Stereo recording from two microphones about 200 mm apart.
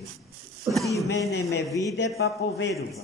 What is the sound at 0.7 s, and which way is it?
Speech, 15° right (ahead or behind).